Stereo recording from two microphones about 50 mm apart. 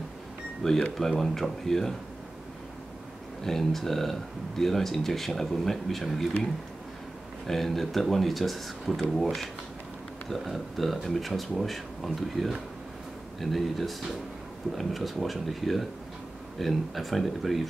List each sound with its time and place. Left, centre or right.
0.9 s speech: centre
3.4 s speech: centre
7.4 s speech: centre